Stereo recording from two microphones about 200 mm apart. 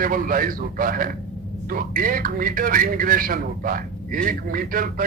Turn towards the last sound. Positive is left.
turn(degrees=-45)  # may be behind; listen again after turning